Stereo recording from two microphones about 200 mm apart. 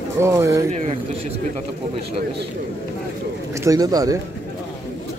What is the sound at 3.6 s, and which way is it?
Speech, 20° right (ahead or behind).